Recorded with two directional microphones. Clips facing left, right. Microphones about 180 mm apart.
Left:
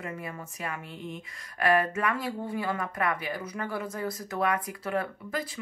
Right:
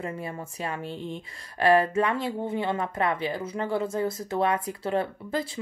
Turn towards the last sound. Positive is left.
turn(degrees=-25)  # may be behind; listen again after turning